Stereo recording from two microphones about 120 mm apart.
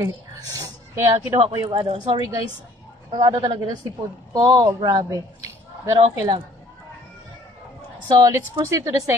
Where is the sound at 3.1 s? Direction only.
40° right (ahead or behind).